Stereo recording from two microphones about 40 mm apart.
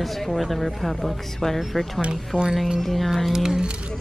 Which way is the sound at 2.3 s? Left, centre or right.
Left.